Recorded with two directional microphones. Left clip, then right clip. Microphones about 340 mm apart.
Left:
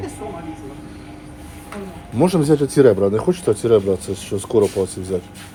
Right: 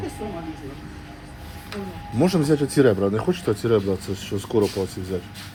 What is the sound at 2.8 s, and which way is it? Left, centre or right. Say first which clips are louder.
Speech: left 7 dB; left.